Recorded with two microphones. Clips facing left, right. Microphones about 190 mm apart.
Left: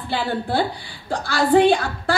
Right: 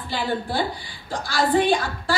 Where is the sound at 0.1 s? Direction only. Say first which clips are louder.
Left 3 dB; 60° left (ahead or behind).